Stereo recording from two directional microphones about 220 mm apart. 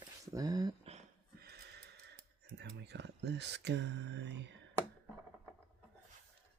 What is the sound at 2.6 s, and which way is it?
Speech, 50° right (ahead or behind).